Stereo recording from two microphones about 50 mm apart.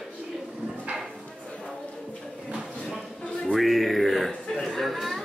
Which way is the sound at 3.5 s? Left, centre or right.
Centre.